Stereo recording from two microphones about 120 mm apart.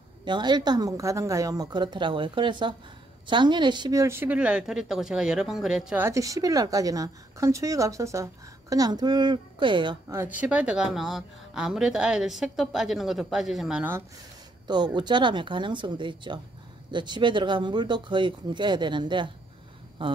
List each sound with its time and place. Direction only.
0.2 s a woman's voice: 40° right (ahead or behind)
4.0 s a woman's voice: 20° right (ahead or behind); by 5.9 s 5° right (ahead or behind)
5.9 s a woman's voice: 25° right (ahead or behind); by 9.9 s 40° right (ahead or behind)
10.0 s a woman's voice: 25° right (ahead or behind)
10.3 s a woman's voice: 10° right (ahead or behind)
14.7 s a woman's voice: 35° right (ahead or behind)